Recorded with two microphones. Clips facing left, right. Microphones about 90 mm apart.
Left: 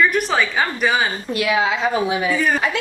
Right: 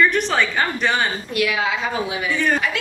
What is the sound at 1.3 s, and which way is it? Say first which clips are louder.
A woman's voice: left 4 dB; 30° left (ahead or behind).